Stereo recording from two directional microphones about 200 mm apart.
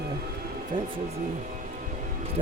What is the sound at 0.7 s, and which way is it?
Speech, 25° right (ahead or behind).